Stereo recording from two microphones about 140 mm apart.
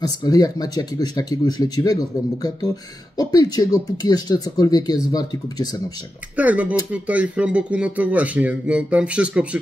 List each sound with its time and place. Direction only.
0.0 s speech: 25° left (ahead or behind)
3.2 s speech: 25° left (ahead or behind)
6.3 s speech: 10° right (ahead or behind)